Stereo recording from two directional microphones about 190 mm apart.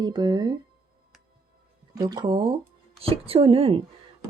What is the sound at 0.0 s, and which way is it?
Speech, 20° right (ahead or behind).